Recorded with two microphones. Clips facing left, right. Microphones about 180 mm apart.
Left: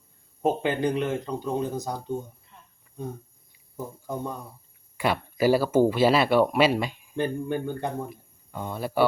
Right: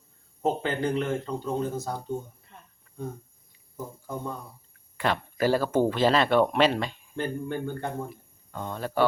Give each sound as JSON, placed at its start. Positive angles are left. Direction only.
{"t": 0.4, "sound": "speech", "side_deg": 15}
{"t": 3.8, "sound": "speech", "side_deg": 15}